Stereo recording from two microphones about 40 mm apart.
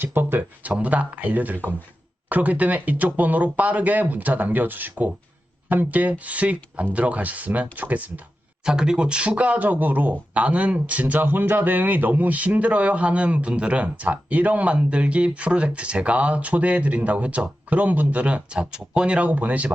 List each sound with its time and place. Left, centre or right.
0.0 s speech: right
0.6 s a man's voice: right
8.6 s a man's voice: centre; by 10.2 s right
10.3 s a man's voice: right
11.2 s a man's voice: right